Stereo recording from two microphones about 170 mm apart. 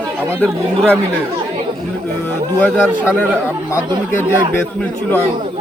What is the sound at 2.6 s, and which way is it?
Speech, 10° left (ahead or behind).